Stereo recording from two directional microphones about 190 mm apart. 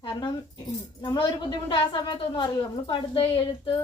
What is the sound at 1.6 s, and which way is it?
A woman's voice, 25° left (ahead or behind).